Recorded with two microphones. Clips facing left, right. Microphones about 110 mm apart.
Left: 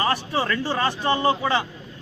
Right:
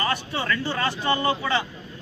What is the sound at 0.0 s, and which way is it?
A man's voice, 30° left (ahead or behind).